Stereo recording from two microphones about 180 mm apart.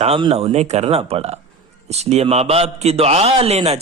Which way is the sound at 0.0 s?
30° right (ahead or behind).